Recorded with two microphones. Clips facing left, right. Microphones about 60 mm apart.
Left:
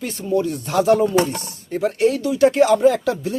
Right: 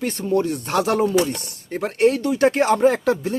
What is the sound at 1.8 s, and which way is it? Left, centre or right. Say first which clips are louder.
Speech: even; right.